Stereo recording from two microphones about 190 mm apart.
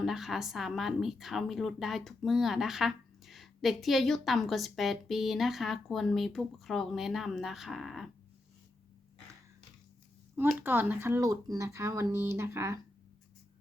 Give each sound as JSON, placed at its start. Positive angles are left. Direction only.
{"t": 0.0, "sound": "a woman's voice", "side_deg": 0}
{"t": 10.6, "sound": "speech", "side_deg": -10}